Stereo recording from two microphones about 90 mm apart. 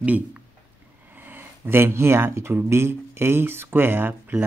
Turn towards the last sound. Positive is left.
turn(degrees=-20)  # may be behind; listen again after turning